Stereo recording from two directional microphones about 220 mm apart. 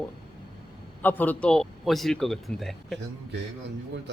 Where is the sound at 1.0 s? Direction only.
10° left (ahead or behind).